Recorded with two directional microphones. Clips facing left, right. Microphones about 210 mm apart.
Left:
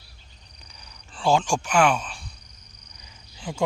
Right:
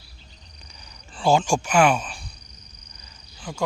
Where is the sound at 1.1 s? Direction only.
Centre (ahead or behind).